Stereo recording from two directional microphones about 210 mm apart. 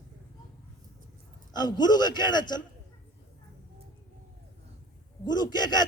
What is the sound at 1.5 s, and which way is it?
A man's voice, 20° left (ahead or behind).